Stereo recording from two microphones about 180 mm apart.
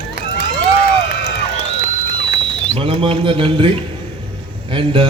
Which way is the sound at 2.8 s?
30° right (ahead or behind).